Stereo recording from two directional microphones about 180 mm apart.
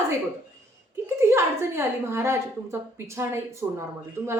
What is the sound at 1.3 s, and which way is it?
A woman's voice, 15° right (ahead or behind).